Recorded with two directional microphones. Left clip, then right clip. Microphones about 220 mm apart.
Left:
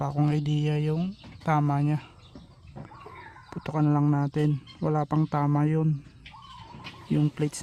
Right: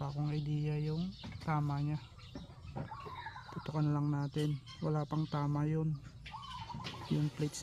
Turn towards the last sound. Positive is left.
turn(degrees=40)  # may be behind; listen again after turning